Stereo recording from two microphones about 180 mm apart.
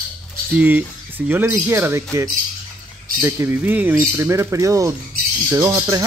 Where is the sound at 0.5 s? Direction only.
10° right (ahead or behind).